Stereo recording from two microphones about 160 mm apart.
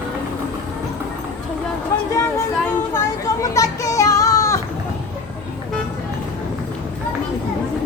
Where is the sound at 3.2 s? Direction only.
20° left (ahead or behind).